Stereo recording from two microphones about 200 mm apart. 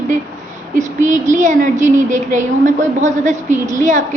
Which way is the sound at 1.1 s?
40° right (ahead or behind).